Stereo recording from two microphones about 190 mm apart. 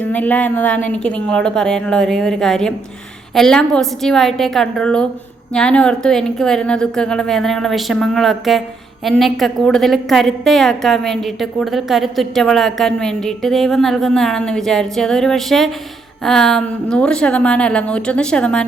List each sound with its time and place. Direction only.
0.0 s a woman's voice: 10° left (ahead or behind)